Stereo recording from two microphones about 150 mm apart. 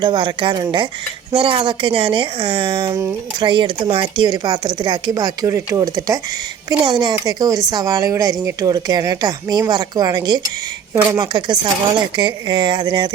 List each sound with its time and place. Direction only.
0.0 s speech: 30° right (ahead or behind)
2.9 s speech: 20° right (ahead or behind)
3.4 s speech: 35° right (ahead or behind)